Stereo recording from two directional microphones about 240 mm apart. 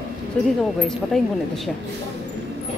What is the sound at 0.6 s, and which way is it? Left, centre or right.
A woman's voice, centre.